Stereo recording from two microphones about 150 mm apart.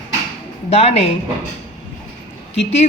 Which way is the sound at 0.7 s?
45° left (ahead or behind).